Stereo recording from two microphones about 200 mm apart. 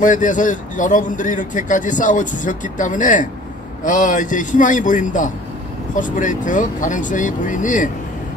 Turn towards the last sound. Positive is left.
turn(degrees=40)  # may be behind; listen again after turning